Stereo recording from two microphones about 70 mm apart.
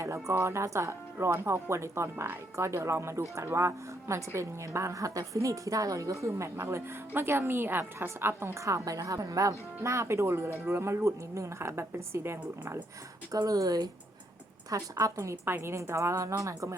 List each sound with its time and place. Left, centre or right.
0.0 s a woman's voice: right
13.3 s speech: right
14.7 s a woman's voice: right